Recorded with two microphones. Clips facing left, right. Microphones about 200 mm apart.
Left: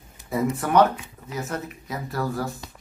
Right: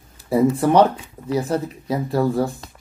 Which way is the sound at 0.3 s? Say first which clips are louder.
Right 7 dB; 30° right (ahead or behind).